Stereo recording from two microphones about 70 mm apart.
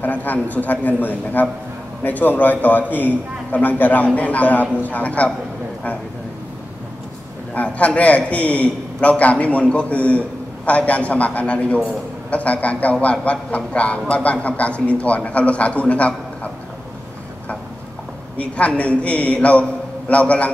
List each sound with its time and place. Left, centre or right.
0.0 s a man's voice: left
7.5 s a man's voice: centre
18.4 s a man's voice: centre